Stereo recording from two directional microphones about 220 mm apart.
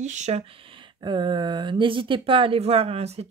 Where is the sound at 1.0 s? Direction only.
20° right (ahead or behind).